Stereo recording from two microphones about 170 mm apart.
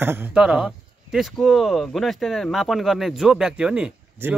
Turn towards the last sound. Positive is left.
turn(degrees=-10)  # may be behind; listen again after turning